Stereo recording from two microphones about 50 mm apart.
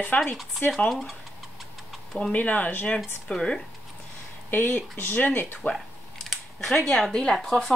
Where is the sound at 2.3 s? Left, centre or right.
Left.